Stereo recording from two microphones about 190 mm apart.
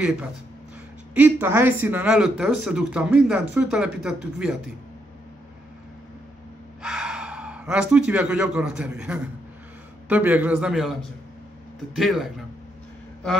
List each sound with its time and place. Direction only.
1.1 s speech: 10° right (ahead or behind)
6.8 s a man's voice: 5° right (ahead or behind)